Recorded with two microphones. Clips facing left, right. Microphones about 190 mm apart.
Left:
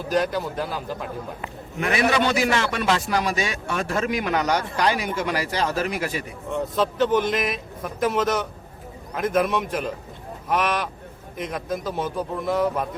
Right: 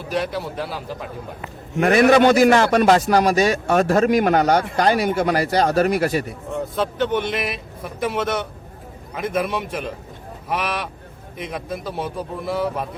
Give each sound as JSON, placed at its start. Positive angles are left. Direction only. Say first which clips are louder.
{"t": 0.1, "sound": "a man's voice", "louder": "left 1 dB", "side_deg": -5}
{"t": 1.8, "sound": "a man's voice", "louder": "right 8 dB", "side_deg": -45}
{"t": 4.9, "sound": "speech", "louder": "right 7 dB", "side_deg": -40}
{"t": 7.0, "sound": "a man's voice", "louder": "left 2 dB", "side_deg": -5}